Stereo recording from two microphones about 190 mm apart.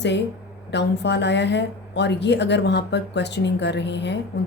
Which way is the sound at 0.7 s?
65° left (ahead or behind).